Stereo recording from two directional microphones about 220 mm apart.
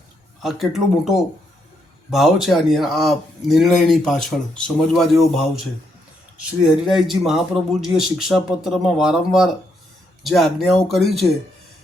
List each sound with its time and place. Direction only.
0.4 s speech: centre (ahead or behind)